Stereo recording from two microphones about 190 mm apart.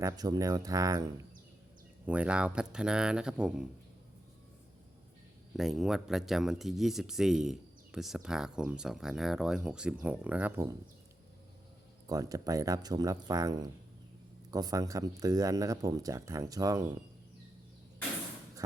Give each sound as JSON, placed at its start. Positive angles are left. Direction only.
{"t": 0.0, "sound": "speech", "side_deg": -20}
{"t": 2.0, "sound": "speech", "side_deg": -5}
{"t": 5.5, "sound": "speech", "side_deg": 0}
{"t": 12.0, "sound": "speech", "side_deg": -20}